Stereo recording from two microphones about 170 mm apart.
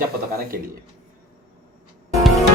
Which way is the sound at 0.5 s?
65° right (ahead or behind).